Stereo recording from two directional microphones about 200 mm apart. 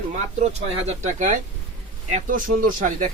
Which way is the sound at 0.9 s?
40° right (ahead or behind).